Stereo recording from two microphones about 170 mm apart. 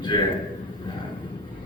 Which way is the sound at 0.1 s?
25° left (ahead or behind).